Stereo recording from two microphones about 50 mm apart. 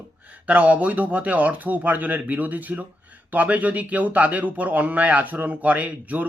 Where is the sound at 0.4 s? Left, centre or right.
Right.